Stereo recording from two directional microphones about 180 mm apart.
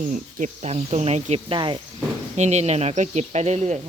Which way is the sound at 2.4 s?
40° right (ahead or behind).